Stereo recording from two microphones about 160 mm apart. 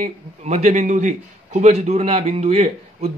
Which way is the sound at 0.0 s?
45° right (ahead or behind).